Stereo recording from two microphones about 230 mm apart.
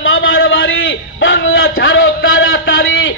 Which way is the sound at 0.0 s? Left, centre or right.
Left.